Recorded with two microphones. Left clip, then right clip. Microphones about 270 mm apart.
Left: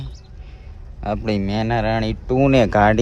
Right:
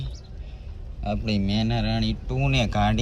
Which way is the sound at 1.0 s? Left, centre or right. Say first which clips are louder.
Left 6 dB; centre.